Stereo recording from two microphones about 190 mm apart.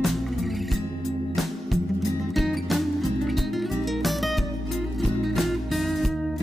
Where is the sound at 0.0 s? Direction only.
Centre (ahead or behind).